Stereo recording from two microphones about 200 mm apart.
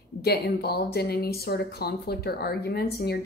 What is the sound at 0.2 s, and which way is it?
Speech, 50° left (ahead or behind).